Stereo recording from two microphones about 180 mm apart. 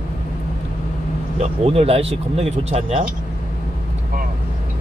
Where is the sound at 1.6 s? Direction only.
35° right (ahead or behind).